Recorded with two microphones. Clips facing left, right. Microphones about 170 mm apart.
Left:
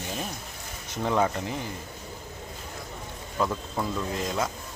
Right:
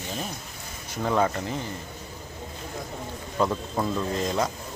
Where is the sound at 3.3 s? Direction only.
15° right (ahead or behind).